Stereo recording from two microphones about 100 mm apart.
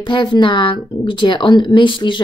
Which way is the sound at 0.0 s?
50° left (ahead or behind).